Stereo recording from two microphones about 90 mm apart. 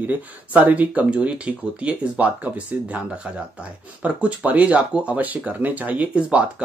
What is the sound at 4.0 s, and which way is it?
Speech, 15° right (ahead or behind).